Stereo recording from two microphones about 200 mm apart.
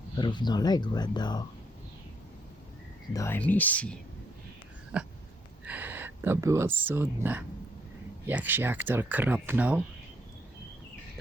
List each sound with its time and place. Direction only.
0.2 s speech: 20° left (ahead or behind)
3.1 s speech: 15° left (ahead or behind)
4.9 s a sound: 5° right (ahead or behind)
5.6 s speech: 10° right (ahead or behind)